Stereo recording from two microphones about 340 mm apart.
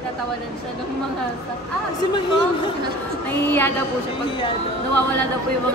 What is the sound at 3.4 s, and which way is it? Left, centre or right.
Speech, centre.